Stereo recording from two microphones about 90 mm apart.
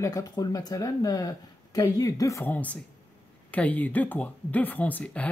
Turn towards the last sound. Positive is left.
turn(degrees=20)  # may be behind; listen again after turning